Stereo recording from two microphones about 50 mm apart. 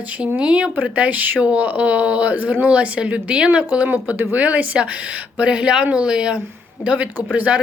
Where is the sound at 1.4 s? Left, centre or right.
Right.